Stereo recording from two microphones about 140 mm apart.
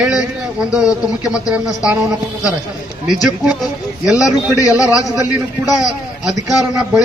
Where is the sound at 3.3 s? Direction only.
Centre (ahead or behind).